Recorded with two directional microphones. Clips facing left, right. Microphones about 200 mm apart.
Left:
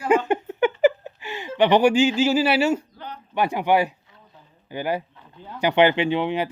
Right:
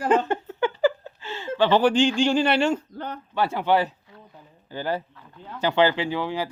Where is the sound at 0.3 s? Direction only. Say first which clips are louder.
Left 4 dB; 15° left (ahead or behind).